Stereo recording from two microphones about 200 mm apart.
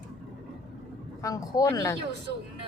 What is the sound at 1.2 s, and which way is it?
Speech, 15° left (ahead or behind).